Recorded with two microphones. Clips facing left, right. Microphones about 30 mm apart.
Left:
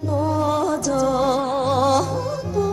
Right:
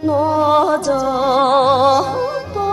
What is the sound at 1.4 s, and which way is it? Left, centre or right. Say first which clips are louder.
Music: right 9 dB; right.